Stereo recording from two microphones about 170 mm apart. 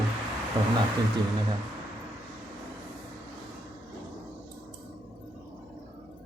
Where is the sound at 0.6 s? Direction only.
20° right (ahead or behind).